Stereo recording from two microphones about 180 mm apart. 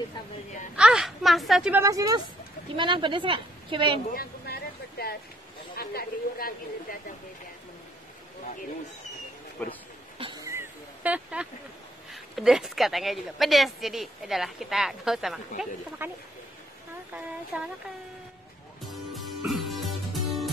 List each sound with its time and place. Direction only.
0.7 s a woman's voice: 5° right (ahead or behind)
1.8 s a woman's voice: 20° right (ahead or behind)
4.1 s a sound: 60° left (ahead or behind)
5.8 s a woman's voice: 55° left (ahead or behind)
9.6 s a man's voice: 10° left (ahead or behind)
10.1 s a sound: 30° right (ahead or behind)
10.4 s a sound: 15° right (ahead or behind)
12.1 s speech: centre (ahead or behind)
16.0 s speech: 10° right (ahead or behind)
17.5 s speech: 10° right (ahead or behind)
19.1 s music: centre (ahead or behind)